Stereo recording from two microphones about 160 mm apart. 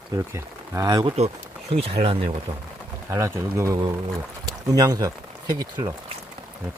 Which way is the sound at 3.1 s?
20° right (ahead or behind).